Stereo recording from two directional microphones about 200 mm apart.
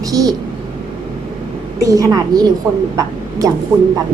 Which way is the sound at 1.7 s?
15° right (ahead or behind).